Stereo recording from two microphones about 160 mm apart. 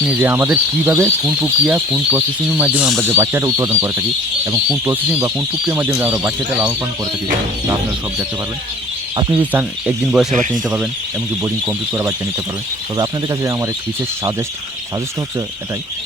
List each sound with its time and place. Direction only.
0.0 s speech: 10° right (ahead or behind)
9.3 s speech: 10° right (ahead or behind)